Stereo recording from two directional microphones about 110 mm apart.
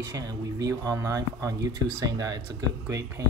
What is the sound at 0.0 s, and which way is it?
Speech, 30° right (ahead or behind).